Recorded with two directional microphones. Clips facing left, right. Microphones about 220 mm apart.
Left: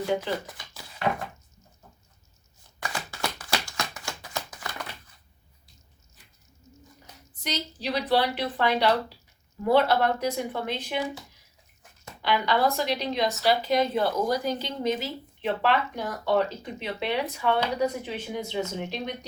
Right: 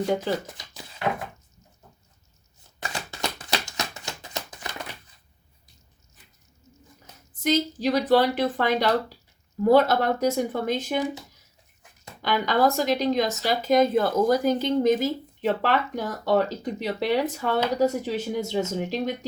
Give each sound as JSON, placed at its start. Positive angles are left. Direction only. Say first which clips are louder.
{"t": 3.1, "sound": "a sound", "louder": "right 2 dB", "side_deg": -20}
{"t": 7.4, "sound": "speech", "louder": "right 9 dB", "side_deg": -45}
{"t": 12.2, "sound": "speech", "louder": "right 2 dB", "side_deg": -45}